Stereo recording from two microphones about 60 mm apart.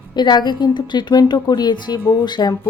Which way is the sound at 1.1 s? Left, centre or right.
Left.